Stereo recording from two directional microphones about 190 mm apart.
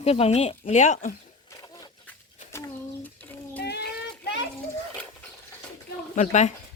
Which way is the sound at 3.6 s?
60° left (ahead or behind).